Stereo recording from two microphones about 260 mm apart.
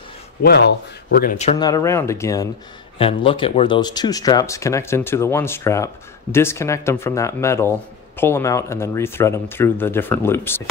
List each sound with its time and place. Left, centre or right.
0.4 s speech: left
1.6 s speech: centre